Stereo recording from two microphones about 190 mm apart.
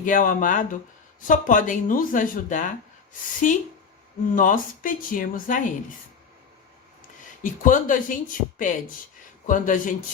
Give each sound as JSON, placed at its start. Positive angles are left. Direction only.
{"t": 0.0, "sound": "speech", "side_deg": 45}
{"t": 7.4, "sound": "speech", "side_deg": 45}
{"t": 9.5, "sound": "speech", "side_deg": 45}